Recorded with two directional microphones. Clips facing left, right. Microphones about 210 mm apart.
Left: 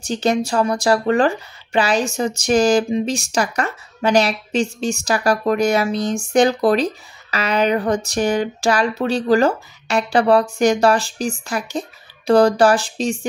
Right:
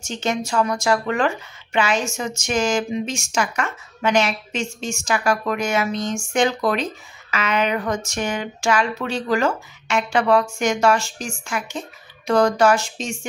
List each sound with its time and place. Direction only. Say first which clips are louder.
0.0 s speech: left 6 dB; 35° left (ahead or behind)